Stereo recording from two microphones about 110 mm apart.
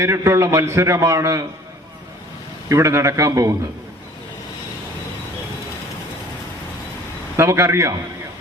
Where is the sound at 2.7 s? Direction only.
25° right (ahead or behind).